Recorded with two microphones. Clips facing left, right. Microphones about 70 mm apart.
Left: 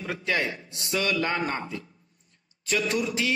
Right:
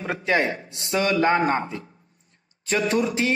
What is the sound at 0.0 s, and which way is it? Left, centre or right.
A man's voice, right.